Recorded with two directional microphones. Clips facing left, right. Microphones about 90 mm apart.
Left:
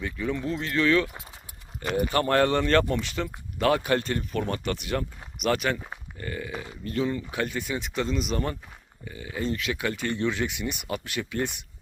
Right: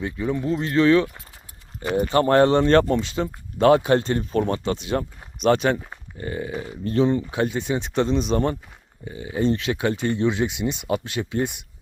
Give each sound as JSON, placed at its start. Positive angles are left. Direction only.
{"t": 0.0, "sound": "speech", "side_deg": -20}